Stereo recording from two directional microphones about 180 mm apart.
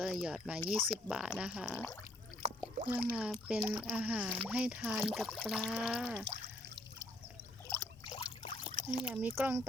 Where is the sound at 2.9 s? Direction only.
10° right (ahead or behind).